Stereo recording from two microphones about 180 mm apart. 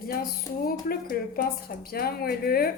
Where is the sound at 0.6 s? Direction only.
55° left (ahead or behind).